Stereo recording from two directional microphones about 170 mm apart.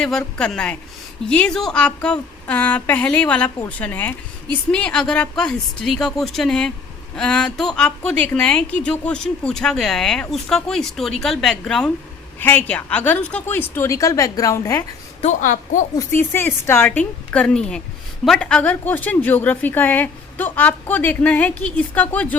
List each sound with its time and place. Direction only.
0.0 s a woman's voice: 5° left (ahead or behind); by 14.8 s 20° left (ahead or behind)
15.2 s a woman's voice: 45° left (ahead or behind)
16.0 s a woman's voice: 15° left (ahead or behind)